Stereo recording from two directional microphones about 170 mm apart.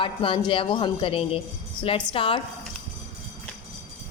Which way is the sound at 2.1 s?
30° left (ahead or behind).